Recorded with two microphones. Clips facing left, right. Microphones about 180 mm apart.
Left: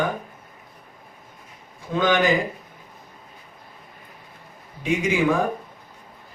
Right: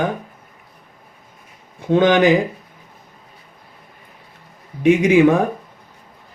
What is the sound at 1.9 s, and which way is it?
Speech, 65° right (ahead or behind).